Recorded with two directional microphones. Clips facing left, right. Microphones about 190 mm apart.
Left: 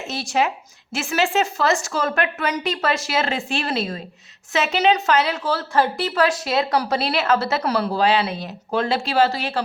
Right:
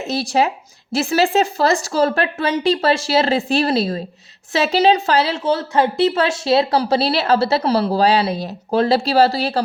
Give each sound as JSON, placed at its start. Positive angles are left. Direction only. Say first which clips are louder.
{"t": 0.0, "sound": "a woman's voice", "louder": "right 4 dB", "side_deg": -35}